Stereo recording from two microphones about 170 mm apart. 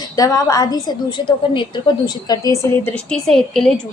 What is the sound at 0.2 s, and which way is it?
Speech, 20° left (ahead or behind).